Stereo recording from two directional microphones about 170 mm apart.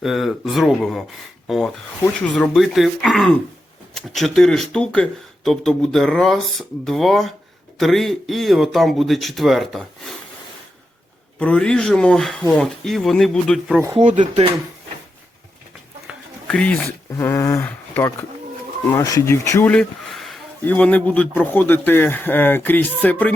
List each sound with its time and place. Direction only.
0.0 s speech: centre (ahead or behind)
11.3 s speech: 5° left (ahead or behind)
13.7 s speech: 15° right (ahead or behind)
16.1 s a sound: 5° right (ahead or behind)
16.5 s speech: 5° left (ahead or behind)